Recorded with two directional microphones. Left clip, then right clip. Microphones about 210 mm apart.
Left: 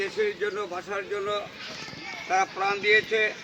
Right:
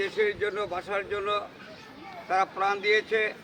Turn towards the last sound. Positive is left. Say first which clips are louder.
# left 3 dB
turn(degrees=35)  # may be behind; listen again after turning